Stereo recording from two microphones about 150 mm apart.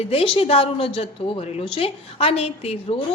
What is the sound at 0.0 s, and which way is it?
A woman's voice, 40° left (ahead or behind).